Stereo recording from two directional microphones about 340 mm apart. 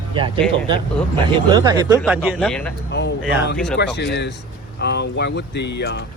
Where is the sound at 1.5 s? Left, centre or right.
Centre.